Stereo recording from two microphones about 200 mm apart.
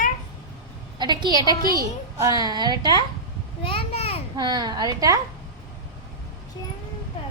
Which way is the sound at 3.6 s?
25° left (ahead or behind).